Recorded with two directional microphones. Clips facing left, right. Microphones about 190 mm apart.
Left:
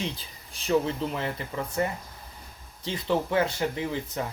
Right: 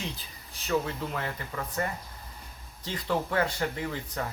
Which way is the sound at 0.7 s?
20° left (ahead or behind).